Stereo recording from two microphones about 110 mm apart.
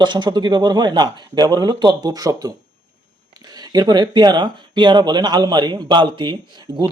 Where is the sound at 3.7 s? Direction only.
40° right (ahead or behind).